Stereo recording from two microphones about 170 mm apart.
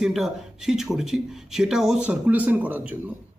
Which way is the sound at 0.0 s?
Centre (ahead or behind).